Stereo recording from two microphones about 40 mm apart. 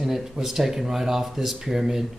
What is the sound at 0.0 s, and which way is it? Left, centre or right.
Speech, centre.